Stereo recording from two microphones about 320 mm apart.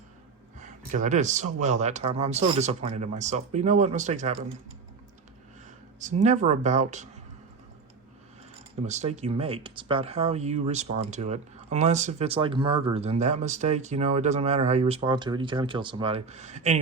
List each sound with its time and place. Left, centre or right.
0.6 s speech: right
6.2 s speech: right
8.9 s speech: right